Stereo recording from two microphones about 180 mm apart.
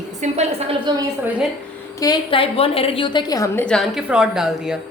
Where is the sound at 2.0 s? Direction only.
25° left (ahead or behind).